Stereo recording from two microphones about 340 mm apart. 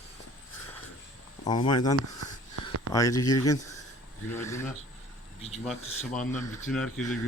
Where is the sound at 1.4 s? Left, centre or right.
Centre.